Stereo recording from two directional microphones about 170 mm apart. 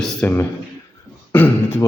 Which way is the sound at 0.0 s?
10° left (ahead or behind).